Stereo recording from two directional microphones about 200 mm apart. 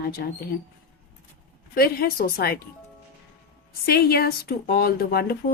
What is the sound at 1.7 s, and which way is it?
Speech, 50° left (ahead or behind).